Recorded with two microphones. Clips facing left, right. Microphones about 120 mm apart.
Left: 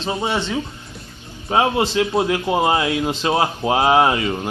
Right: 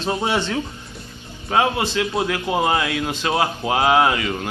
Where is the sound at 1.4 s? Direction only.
25° left (ahead or behind).